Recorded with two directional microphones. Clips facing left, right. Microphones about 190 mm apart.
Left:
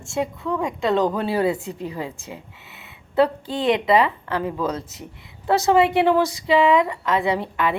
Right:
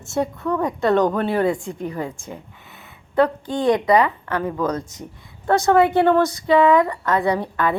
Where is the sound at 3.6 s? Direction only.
25° left (ahead or behind).